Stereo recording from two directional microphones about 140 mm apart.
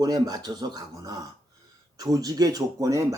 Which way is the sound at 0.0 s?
30° right (ahead or behind).